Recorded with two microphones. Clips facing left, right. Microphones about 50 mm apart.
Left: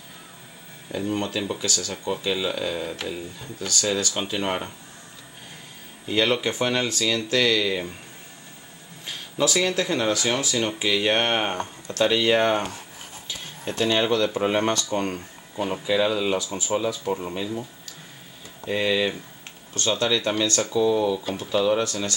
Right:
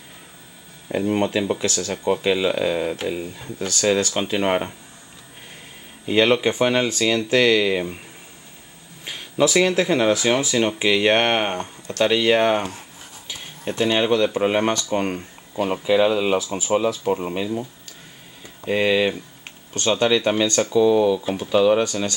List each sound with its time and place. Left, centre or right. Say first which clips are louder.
1.0 s speech: right 6 dB; right
6.0 s speech: right 5 dB; centre
9.0 s speech: right 5 dB; centre
10.9 s speech: right 4 dB; right
12.2 s speech: right 3 dB; centre
13.3 s a sound: right 3 dB; centre
14.0 s speech: right 3 dB; centre
16.4 s speech: right 4 dB; centre
17.2 s speech: right 4 dB; right
18.7 s speech: right 4 dB; centre